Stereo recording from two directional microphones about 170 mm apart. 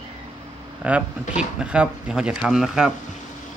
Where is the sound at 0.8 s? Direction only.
5° right (ahead or behind).